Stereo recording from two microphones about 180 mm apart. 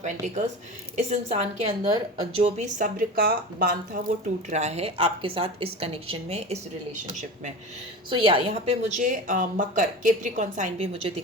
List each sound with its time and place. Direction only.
0.0 s a woman's voice: 40° right (ahead or behind)
4.4 s a woman's voice: 40° right (ahead or behind)
8.1 s a woman's voice: 30° right (ahead or behind)
8.9 s a woman's voice: 45° right (ahead or behind)